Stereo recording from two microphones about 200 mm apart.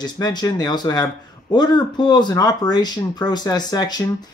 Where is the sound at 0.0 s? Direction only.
20° left (ahead or behind).